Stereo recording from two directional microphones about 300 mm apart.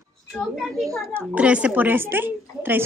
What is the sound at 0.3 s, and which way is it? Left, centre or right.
A child's voice, centre.